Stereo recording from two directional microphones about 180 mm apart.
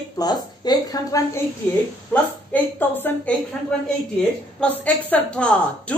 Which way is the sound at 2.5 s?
10° left (ahead or behind).